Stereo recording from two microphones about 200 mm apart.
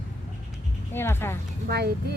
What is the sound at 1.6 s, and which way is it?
Speech, 55° right (ahead or behind).